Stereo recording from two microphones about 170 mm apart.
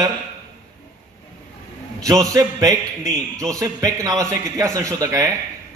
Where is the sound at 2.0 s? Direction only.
20° right (ahead or behind).